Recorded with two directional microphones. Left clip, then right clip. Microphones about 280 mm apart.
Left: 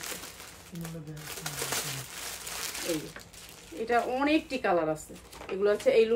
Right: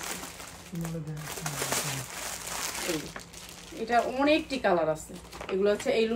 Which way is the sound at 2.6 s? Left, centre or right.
Right.